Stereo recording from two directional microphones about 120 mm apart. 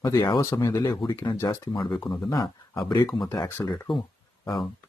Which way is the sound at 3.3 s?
20° left (ahead or behind).